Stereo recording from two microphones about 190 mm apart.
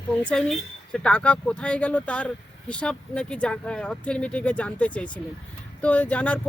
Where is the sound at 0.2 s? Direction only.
5° left (ahead or behind).